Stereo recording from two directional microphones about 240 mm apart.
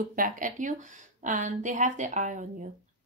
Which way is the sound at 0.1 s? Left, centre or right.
Right.